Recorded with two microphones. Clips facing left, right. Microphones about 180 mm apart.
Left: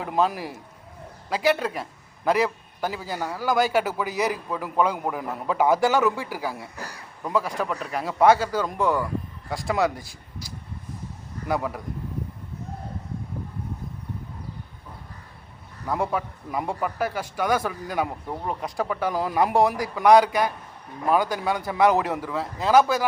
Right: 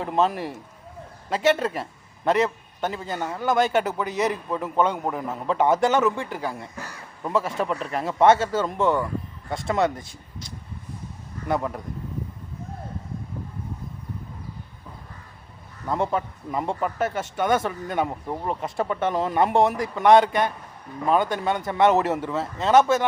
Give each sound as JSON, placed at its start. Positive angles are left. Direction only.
{"t": 0.0, "sound": "speech", "side_deg": 5}
{"t": 11.4, "sound": "speech", "side_deg": 5}
{"t": 15.9, "sound": "speech", "side_deg": 5}